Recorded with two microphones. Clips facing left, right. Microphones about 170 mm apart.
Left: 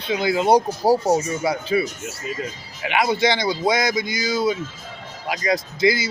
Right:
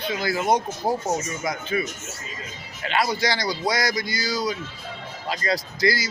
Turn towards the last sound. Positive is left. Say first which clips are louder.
# left 4 dB
turn(degrees=20)  # may be behind; listen again after turning